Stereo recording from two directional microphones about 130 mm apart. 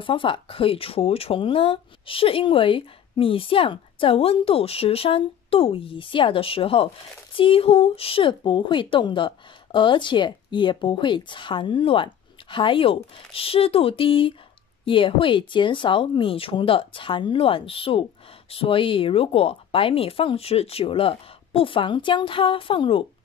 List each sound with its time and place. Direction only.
0.0 s speech: 40° left (ahead or behind)